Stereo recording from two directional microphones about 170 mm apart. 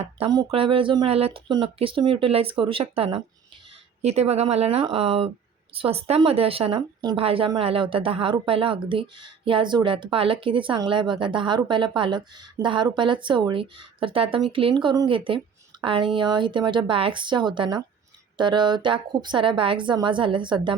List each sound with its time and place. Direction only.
0.3 s a woman's voice: 25° right (ahead or behind)